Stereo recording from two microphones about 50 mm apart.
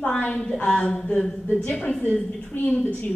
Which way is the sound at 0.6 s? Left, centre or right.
Centre.